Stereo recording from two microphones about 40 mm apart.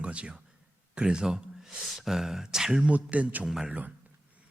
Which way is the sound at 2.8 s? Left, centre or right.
Right.